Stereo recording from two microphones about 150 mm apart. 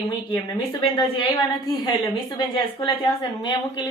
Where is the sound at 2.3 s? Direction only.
30° left (ahead or behind).